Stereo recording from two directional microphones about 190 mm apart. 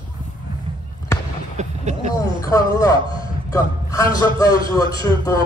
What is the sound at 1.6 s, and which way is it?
Vehicle, 35° right (ahead or behind).